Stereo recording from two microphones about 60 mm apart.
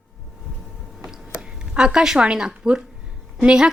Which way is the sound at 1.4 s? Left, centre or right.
Centre.